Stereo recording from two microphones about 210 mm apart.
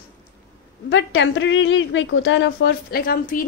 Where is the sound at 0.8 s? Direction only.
60° left (ahead or behind).